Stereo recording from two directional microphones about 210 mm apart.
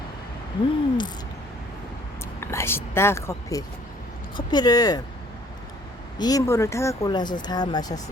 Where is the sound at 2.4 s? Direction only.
10° left (ahead or behind).